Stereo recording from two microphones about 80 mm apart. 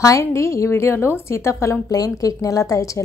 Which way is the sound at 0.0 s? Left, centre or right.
Left.